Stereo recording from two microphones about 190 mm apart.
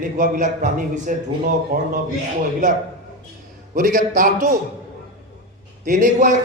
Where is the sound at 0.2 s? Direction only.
40° right (ahead or behind).